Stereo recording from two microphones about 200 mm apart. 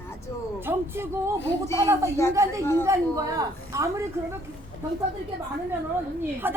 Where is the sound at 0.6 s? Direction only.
10° right (ahead or behind).